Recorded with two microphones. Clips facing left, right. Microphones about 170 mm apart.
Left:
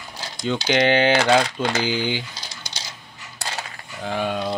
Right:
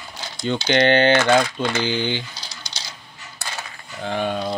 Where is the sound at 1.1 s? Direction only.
35° left (ahead or behind).